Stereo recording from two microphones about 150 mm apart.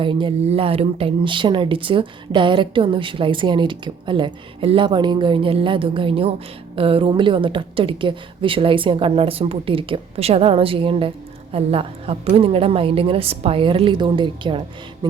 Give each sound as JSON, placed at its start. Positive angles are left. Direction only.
{"t": 0.0, "sound": "speech", "side_deg": -35}